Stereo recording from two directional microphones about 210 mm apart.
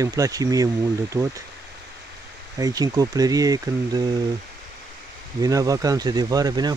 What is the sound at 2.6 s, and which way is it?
Speech, 15° right (ahead or behind).